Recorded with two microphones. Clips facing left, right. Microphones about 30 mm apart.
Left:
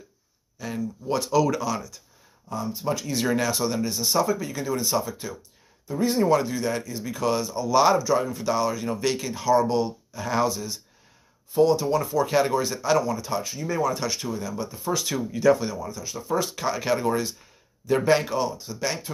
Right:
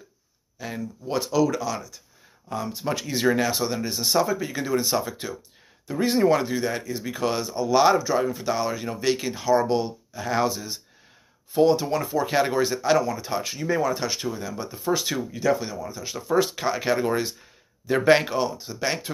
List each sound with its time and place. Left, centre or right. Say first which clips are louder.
0.6 s speech: left 2 dB; centre
1.4 s speech: right 1 dB; centre
2.5 s speech: even; right
3.1 s speech: right 3 dB; centre
3.9 s speech: right 3 dB; right
6.2 s speech: right 1 dB; right
11.6 s speech: even; right; by 13.0 s centre
13.4 s speech: right 1 dB; right
13.7 s speech: right 1 dB; centre
15.3 s speech: left 5 dB; centre
16.0 s speech: right 5 dB; right
16.5 s speech: right 1 dB; centre